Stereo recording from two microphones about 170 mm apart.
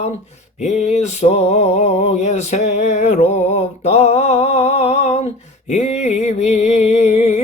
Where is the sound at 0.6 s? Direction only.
40° left (ahead or behind).